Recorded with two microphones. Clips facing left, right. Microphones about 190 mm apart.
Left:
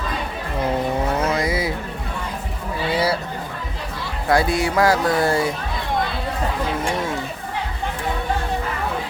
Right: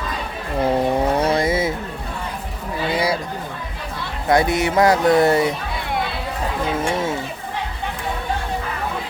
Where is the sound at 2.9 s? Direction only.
10° right (ahead or behind).